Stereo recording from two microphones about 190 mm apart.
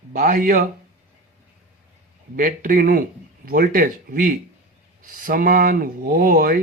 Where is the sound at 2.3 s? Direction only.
45° right (ahead or behind).